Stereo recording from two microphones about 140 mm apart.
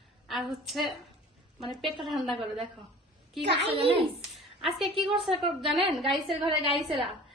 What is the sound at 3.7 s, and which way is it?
Speech, 40° right (ahead or behind).